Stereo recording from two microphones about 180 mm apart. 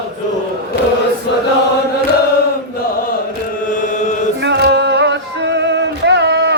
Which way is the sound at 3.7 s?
45° left (ahead or behind).